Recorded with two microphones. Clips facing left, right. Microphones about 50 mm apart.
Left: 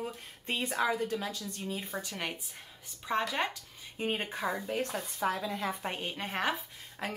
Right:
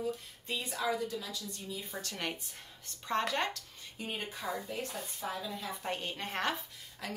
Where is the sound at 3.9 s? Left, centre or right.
Left.